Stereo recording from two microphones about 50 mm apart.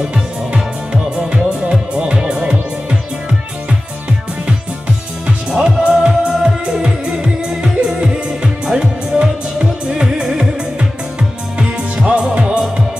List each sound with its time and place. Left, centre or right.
0.0 s music: right
5.5 s music: centre
12.1 s music: centre